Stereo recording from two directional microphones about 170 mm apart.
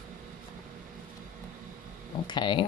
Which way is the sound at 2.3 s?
30° left (ahead or behind).